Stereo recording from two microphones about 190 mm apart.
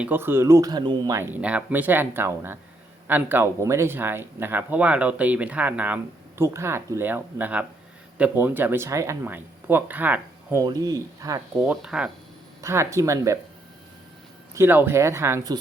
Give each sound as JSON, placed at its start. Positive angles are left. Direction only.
{"t": 0.0, "sound": "speech", "side_deg": -10}
{"t": 11.6, "sound": "speech", "side_deg": -5}
{"t": 12.6, "sound": "speech", "side_deg": -15}
{"t": 14.5, "sound": "speech", "side_deg": -10}